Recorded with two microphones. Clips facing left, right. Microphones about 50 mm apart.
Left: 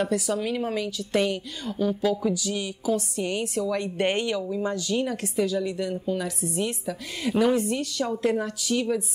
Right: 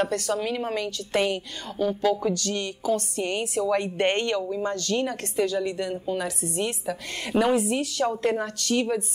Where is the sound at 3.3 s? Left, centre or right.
Centre.